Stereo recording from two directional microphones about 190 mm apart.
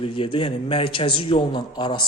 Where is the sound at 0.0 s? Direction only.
30° left (ahead or behind).